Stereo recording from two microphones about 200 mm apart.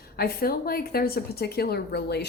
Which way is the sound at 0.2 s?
50° left (ahead or behind).